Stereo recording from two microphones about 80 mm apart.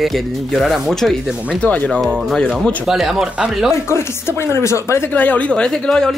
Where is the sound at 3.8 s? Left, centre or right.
Left.